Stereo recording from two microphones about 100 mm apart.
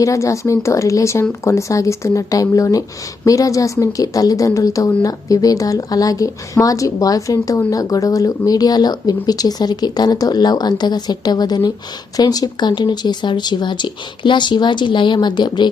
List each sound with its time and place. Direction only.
0.0 s a woman's voice: 35° left (ahead or behind); by 15.7 s 50° left (ahead or behind)